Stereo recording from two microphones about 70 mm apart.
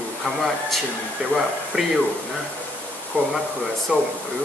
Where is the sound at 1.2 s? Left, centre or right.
Centre.